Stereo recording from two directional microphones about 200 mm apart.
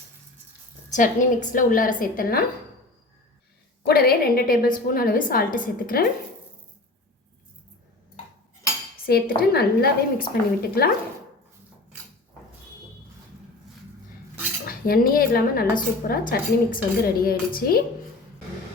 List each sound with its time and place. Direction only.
0.9 s a woman's voice: 40° left (ahead or behind)
3.8 s speech: 50° left (ahead or behind)
9.0 s speech: 50° left (ahead or behind)
14.6 s speech: 45° left (ahead or behind)